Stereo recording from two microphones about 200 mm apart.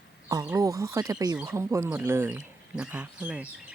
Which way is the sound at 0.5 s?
15° right (ahead or behind).